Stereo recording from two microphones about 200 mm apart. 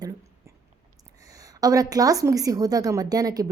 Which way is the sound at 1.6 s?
20° right (ahead or behind).